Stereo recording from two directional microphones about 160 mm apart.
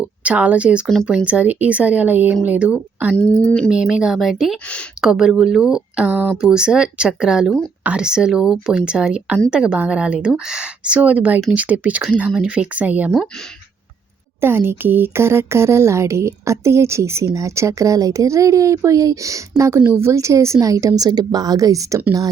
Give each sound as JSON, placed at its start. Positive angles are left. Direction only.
{"t": 0.3, "sound": "speech", "side_deg": -10}
{"t": 3.2, "sound": "speech", "side_deg": 10}
{"t": 14.4, "sound": "speech", "side_deg": -15}